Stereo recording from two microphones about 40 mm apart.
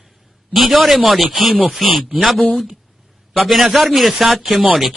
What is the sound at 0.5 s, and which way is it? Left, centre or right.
Speech, centre.